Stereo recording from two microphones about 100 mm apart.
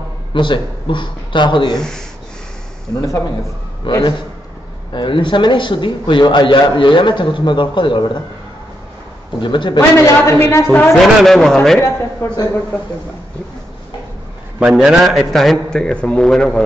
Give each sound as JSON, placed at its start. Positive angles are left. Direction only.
{"t": 0.3, "sound": "a man's voice", "side_deg": 55}
{"t": 1.8, "sound": "a man's voice", "side_deg": 5}
{"t": 2.9, "sound": "a man's voice", "side_deg": 35}
{"t": 3.9, "sound": "a man's voice", "side_deg": 55}
{"t": 9.4, "sound": "a man's voice", "side_deg": 55}
{"t": 9.8, "sound": "a woman's voice", "side_deg": 30}
{"t": 10.9, "sound": "a man's voice", "side_deg": 5}
{"t": 11.8, "sound": "a man's voice", "side_deg": 30}
{"t": 14.6, "sound": "a man's voice", "side_deg": -5}